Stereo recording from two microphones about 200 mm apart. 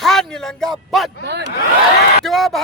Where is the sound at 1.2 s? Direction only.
55° right (ahead or behind).